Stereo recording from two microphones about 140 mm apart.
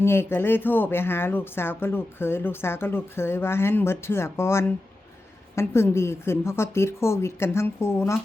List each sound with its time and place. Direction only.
0.0 s a woman's voice: 15° left (ahead or behind)